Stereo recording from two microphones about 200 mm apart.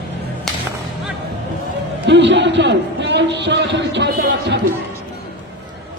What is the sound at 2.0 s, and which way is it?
A man's voice, 60° right (ahead or behind).